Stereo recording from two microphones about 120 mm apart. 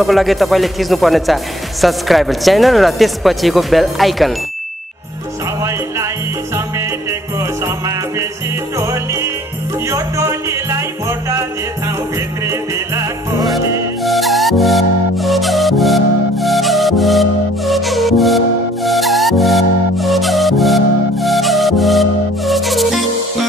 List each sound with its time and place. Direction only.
0.0 s speech: centre (ahead or behind)
5.6 s music: 25° right (ahead or behind)
12.4 s music: 25° right (ahead or behind)
14.0 s music: centre (ahead or behind)